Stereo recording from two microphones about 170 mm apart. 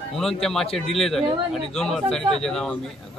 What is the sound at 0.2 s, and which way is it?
Speech, centre (ahead or behind).